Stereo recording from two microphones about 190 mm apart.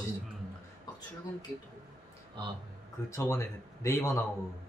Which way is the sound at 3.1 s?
15° left (ahead or behind).